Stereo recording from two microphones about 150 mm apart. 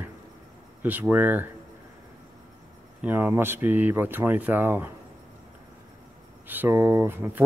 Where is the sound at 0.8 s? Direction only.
10° right (ahead or behind).